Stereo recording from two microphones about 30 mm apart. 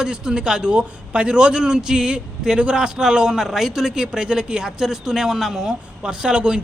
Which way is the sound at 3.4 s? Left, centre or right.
Centre.